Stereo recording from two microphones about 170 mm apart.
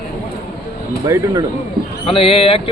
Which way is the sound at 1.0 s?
20° right (ahead or behind).